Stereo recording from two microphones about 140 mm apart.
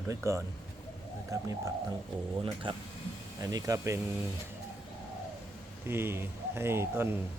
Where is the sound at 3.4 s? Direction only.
25° right (ahead or behind).